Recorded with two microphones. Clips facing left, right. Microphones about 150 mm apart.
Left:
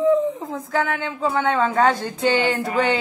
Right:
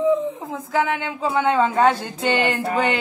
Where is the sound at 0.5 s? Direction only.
10° right (ahead or behind).